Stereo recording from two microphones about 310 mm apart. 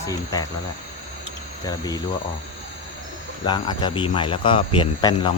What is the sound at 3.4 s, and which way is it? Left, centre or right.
Speech, centre.